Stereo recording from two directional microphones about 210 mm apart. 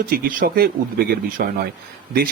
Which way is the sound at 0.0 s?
40° right (ahead or behind).